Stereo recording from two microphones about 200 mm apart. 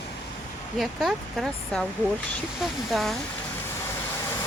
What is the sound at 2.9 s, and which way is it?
Speech, centre (ahead or behind).